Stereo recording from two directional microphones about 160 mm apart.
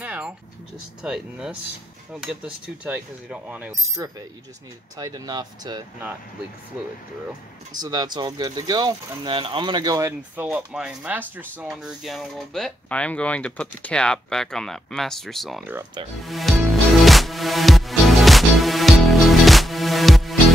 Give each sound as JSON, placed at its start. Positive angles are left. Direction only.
{"t": 0.0, "sound": "vehicle", "side_deg": -10}
{"t": 1.0, "sound": "speech", "side_deg": -5}
{"t": 4.9, "sound": "speech", "side_deg": -25}
{"t": 7.8, "sound": "speech", "side_deg": -25}
{"t": 10.3, "sound": "speech", "side_deg": -5}
{"t": 16.3, "sound": "music", "side_deg": 0}